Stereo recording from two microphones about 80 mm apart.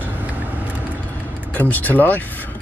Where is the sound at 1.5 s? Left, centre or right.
Left.